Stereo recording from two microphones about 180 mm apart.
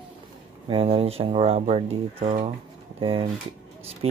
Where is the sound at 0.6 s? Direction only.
30° right (ahead or behind).